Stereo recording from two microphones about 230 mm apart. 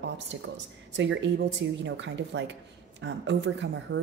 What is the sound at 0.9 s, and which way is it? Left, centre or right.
A woman's voice, right.